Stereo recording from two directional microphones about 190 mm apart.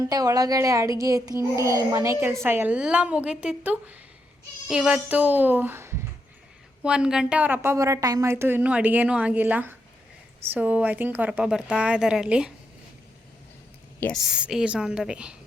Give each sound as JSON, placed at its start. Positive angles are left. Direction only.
{"t": 0.1, "sound": "a child's voice", "side_deg": -20}
{"t": 14.0, "sound": "a woman's voice", "side_deg": 0}